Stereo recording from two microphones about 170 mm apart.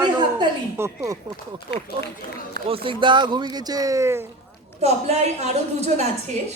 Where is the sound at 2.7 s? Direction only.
30° right (ahead or behind).